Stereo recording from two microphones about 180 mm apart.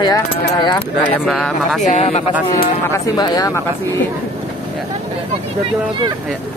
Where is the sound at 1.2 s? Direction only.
5° left (ahead or behind).